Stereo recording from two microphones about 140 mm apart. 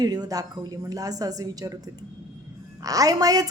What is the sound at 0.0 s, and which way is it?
A woman's voice, 25° right (ahead or behind).